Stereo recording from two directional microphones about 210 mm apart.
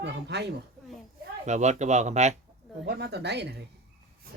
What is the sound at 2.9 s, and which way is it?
Speech, 50° right (ahead or behind).